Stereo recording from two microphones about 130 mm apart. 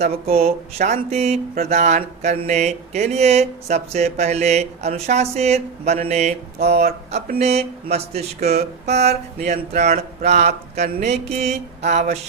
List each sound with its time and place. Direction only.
0.0 s speech: 50° right (ahead or behind)